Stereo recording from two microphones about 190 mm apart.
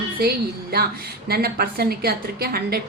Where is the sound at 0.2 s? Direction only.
55° right (ahead or behind).